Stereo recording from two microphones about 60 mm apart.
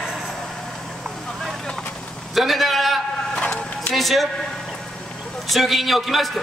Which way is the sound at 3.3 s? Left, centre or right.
Centre.